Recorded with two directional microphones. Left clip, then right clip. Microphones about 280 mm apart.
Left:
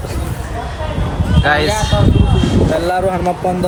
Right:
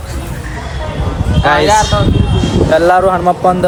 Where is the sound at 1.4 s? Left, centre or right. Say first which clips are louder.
Right 4 dB; centre.